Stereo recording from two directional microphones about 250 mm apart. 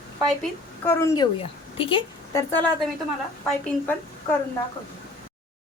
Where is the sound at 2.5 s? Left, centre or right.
Centre.